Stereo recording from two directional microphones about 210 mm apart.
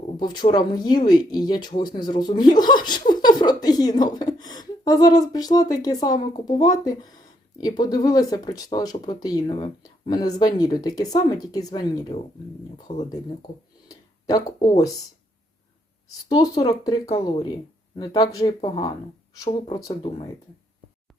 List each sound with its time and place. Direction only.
0.3 s speech: 20° left (ahead or behind)
13.8 s speech: 15° left (ahead or behind)
16.6 s speech: 15° left (ahead or behind)